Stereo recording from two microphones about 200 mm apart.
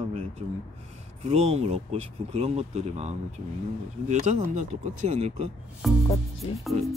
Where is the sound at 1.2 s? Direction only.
30° right (ahead or behind).